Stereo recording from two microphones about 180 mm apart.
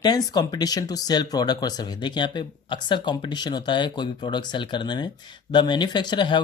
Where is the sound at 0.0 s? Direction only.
20° left (ahead or behind).